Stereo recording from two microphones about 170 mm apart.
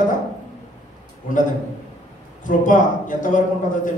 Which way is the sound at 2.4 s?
50° left (ahead or behind).